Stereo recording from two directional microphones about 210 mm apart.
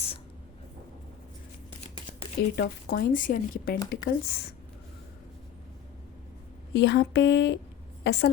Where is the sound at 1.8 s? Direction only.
30° left (ahead or behind).